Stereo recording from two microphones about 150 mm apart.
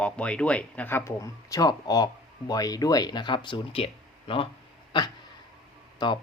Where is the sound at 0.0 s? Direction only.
10° left (ahead or behind); by 4.4 s 40° left (ahead or behind).